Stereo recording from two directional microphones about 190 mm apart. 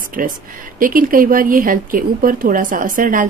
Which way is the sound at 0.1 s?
45° right (ahead or behind).